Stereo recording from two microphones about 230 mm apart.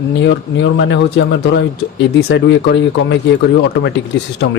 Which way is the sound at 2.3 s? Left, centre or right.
Left.